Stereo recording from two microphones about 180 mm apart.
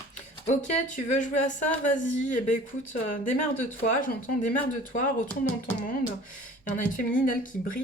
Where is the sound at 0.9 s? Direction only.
45° left (ahead or behind).